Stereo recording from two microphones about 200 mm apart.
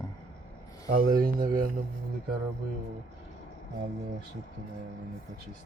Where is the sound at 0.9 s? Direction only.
50° right (ahead or behind).